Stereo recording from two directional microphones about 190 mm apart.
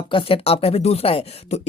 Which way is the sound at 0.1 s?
30° left (ahead or behind).